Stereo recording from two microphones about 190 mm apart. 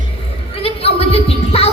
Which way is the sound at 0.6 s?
30° left (ahead or behind).